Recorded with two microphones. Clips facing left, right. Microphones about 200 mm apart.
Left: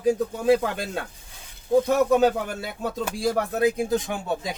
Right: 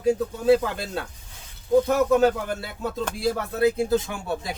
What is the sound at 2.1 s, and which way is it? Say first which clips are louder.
Speech: even; 15° left (ahead or behind).